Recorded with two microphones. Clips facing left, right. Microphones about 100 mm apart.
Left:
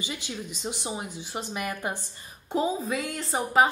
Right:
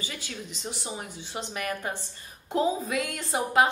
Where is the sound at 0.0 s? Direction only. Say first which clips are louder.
Left 3 dB; 15° left (ahead or behind).